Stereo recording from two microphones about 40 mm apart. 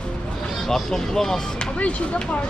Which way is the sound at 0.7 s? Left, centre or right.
Centre.